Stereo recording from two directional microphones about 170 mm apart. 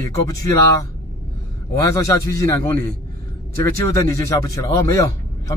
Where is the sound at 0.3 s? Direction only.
20° left (ahead or behind).